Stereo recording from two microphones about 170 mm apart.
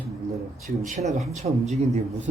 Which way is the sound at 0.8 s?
50° right (ahead or behind).